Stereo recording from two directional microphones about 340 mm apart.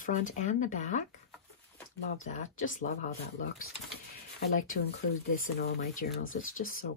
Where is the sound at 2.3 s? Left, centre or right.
Left.